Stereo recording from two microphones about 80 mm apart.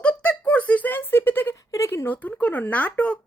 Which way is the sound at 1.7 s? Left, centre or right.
Left.